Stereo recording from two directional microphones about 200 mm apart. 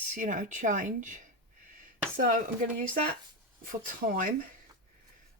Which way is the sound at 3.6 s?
40° right (ahead or behind).